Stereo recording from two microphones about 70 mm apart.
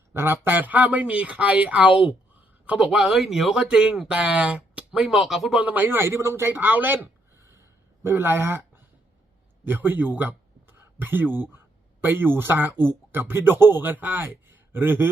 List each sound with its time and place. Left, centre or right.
0.1 s speech: right
2.8 s speech: centre
4.9 s speech: centre
5.5 s a man's voice: right
6.5 s a sound: right
8.0 s a man's voice: right
9.6 s a man's voice: right